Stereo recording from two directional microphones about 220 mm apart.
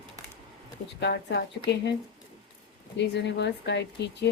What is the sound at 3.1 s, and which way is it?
A woman's voice, 50° left (ahead or behind).